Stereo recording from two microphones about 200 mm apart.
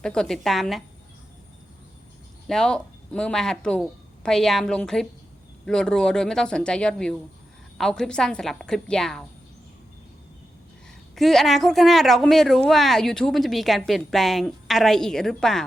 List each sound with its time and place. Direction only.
0.0 s speech: 5° left (ahead or behind)
2.5 s speech: 5° left (ahead or behind)
11.1 s speech: centre (ahead or behind)